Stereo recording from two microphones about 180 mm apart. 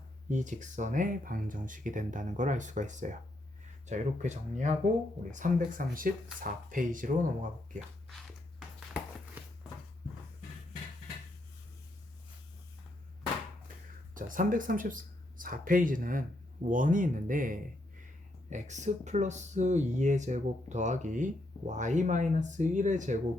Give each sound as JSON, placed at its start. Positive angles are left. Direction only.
{"t": 0.3, "sound": "speech", "side_deg": -45}
{"t": 8.1, "sound": "a sound", "side_deg": 0}
{"t": 14.1, "sound": "speech", "side_deg": -50}